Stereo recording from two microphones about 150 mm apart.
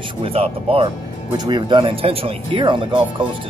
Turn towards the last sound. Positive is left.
turn(degrees=-30)  # may be behind; listen again after turning